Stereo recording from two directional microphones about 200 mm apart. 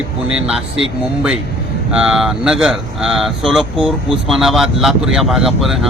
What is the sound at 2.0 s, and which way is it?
Speech, centre (ahead or behind).